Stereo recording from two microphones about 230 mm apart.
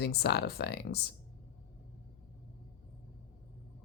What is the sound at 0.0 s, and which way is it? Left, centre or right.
A woman's voice, left.